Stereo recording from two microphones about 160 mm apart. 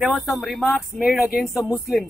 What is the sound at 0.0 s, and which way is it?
Speech, centre (ahead or behind).